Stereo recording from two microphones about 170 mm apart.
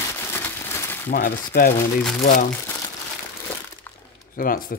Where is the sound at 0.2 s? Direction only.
15° left (ahead or behind).